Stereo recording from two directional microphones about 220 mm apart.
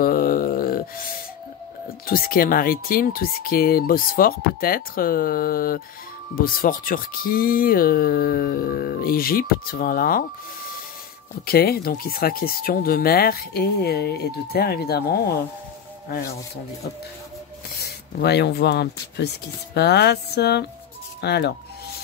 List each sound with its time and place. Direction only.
0.0 s groan: 40° left (ahead or behind)
2.0 s speech: 40° left (ahead or behind)
11.4 s speech: 45° left (ahead or behind)
17.7 s speech: 50° left (ahead or behind)